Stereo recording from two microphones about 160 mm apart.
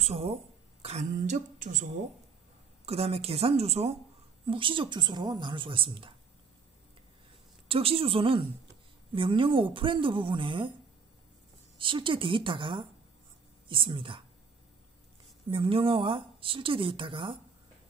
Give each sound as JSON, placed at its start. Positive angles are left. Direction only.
{"t": 0.0, "sound": "speech", "side_deg": -40}
{"t": 2.8, "sound": "speech", "side_deg": -40}
{"t": 7.6, "sound": "speech", "side_deg": -35}
{"t": 11.8, "sound": "speech", "side_deg": -30}
{"t": 15.5, "sound": "speech", "side_deg": -35}